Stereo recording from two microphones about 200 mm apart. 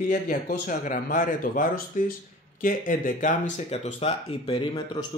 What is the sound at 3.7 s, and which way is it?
Speech, 30° left (ahead or behind).